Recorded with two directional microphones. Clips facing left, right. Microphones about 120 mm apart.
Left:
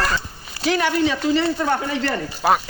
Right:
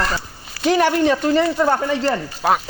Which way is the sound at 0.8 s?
50° right (ahead or behind).